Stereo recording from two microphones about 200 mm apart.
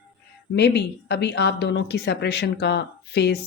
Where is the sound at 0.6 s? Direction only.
55° left (ahead or behind).